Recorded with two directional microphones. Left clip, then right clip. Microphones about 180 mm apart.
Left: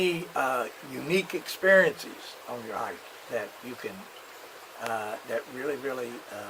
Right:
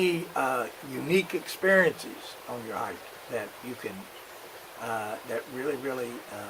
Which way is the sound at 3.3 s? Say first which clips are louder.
Left 1 dB; 15° left (ahead or behind).